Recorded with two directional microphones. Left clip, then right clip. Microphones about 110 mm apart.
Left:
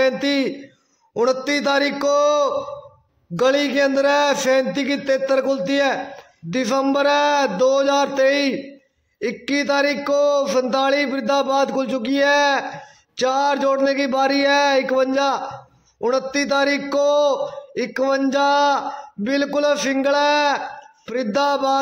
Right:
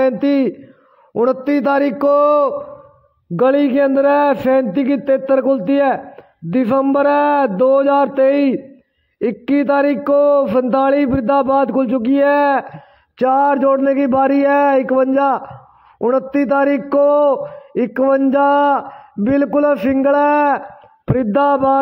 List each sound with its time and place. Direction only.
0.0 s a man's voice: 50° right (ahead or behind)